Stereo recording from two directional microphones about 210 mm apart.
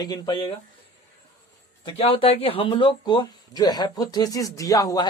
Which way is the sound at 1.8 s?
25° left (ahead or behind).